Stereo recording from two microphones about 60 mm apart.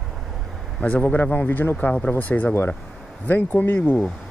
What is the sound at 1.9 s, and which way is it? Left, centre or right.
Speech, centre.